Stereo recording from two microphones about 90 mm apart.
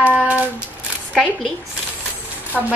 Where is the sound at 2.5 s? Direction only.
Centre (ahead or behind).